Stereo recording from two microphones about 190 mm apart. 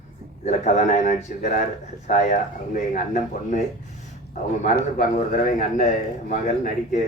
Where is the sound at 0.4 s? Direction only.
40° left (ahead or behind).